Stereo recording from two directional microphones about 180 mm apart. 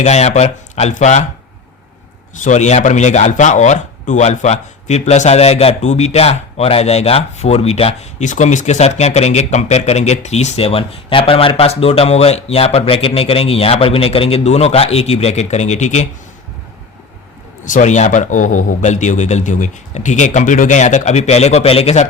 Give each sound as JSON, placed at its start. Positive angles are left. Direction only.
{"t": 0.0, "sound": "speech", "side_deg": 40}
{"t": 2.3, "sound": "speech", "side_deg": 45}
{"t": 17.7, "sound": "speech", "side_deg": 45}